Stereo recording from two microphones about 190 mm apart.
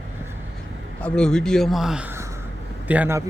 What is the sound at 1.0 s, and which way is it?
Speech, 5° left (ahead or behind).